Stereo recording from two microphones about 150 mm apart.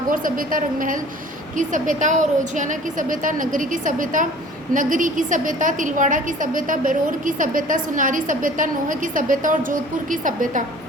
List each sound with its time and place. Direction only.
0.1 s a woman's voice: 65° right (ahead or behind)